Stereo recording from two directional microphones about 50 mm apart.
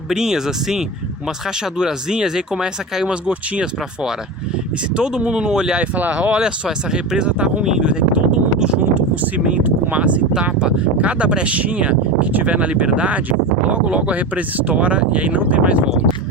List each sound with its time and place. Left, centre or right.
0.1 s speech: centre
5.8 s speech: right
6.4 s speech: centre
7.6 s a sound: centre
9.5 s speech: right